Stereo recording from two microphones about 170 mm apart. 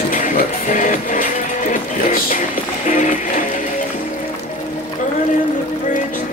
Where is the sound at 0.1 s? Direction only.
50° left (ahead or behind).